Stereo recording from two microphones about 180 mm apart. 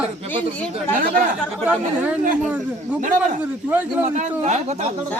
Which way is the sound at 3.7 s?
10° right (ahead or behind).